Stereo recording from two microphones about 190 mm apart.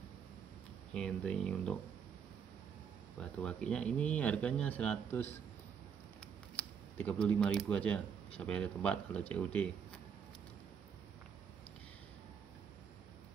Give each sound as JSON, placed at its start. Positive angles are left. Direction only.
{"t": 0.9, "sound": "speech", "side_deg": 5}
{"t": 3.2, "sound": "speech", "side_deg": 5}
{"t": 7.0, "sound": "speech", "side_deg": 5}